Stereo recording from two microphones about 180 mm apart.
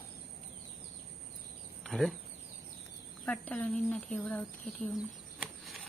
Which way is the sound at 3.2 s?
5° left (ahead or behind).